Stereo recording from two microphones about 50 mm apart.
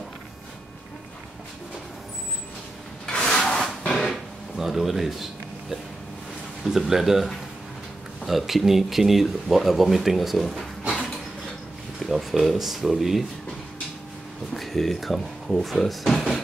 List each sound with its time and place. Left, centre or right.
3.1 s wood: centre
3.3 s a sound: centre
4.1 s a sound: centre
6.7 s speech: centre
8.3 s speech: centre
12.0 s speech: centre
14.5 s speech: centre